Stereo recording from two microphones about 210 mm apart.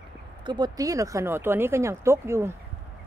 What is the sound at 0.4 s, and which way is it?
Speech, 20° right (ahead or behind).